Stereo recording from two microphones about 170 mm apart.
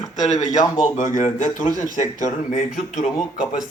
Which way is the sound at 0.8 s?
50° left (ahead or behind).